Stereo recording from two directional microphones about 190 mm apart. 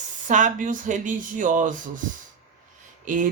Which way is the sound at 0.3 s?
40° right (ahead or behind).